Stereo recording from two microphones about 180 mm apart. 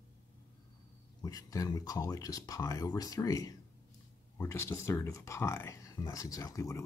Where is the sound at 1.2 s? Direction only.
20° left (ahead or behind).